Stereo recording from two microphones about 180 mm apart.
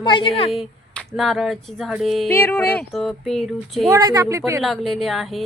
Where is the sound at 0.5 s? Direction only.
Centre (ahead or behind).